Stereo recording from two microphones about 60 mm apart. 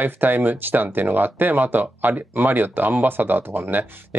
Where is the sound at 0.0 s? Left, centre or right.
Right.